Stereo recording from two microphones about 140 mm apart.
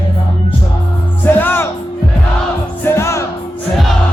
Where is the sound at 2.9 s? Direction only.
20° left (ahead or behind).